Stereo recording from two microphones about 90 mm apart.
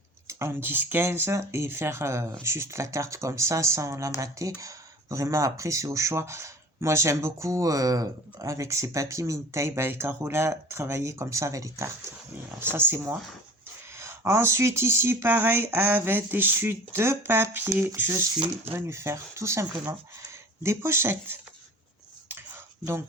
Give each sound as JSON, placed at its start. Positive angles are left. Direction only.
{"t": 0.3, "sound": "speech", "side_deg": -30}
{"t": 12.7, "sound": "speech", "side_deg": -25}
{"t": 18.3, "sound": "speech", "side_deg": -75}
{"t": 18.7, "sound": "speech", "side_deg": -30}
{"t": 22.3, "sound": "a sound", "side_deg": -25}